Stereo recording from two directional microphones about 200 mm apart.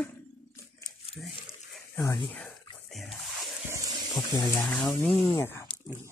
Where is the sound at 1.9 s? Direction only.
15° left (ahead or behind).